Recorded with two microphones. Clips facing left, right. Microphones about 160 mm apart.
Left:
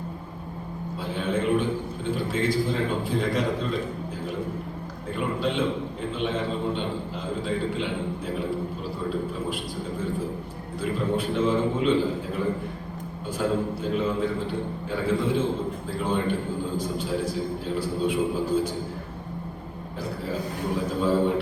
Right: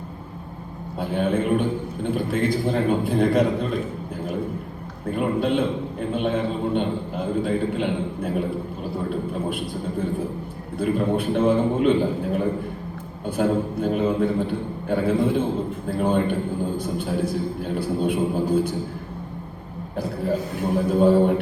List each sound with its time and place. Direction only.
0.9 s a man's voice: 55° right (ahead or behind)
5.1 s a man's voice: 55° right (ahead or behind)
10.8 s a man's voice: 55° right (ahead or behind)
17.7 s a man's voice: 55° right (ahead or behind)
20.7 s a man's voice: 55° right (ahead or behind)